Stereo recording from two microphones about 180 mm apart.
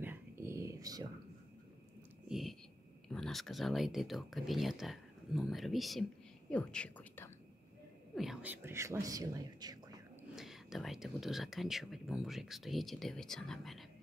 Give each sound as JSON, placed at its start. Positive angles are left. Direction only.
{"t": 0.0, "sound": "whispering", "side_deg": -15}
{"t": 2.2, "sound": "a sound", "side_deg": 0}
{"t": 3.1, "sound": "a woman's voice", "side_deg": 0}
{"t": 8.2, "sound": "speech", "side_deg": -5}
{"t": 10.3, "sound": "speech", "side_deg": 0}